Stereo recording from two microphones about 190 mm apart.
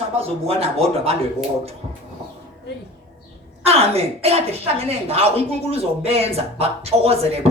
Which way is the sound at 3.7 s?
30° right (ahead or behind).